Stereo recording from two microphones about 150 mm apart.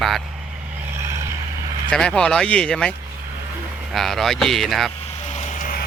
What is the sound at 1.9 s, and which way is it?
Speech, 5° left (ahead or behind).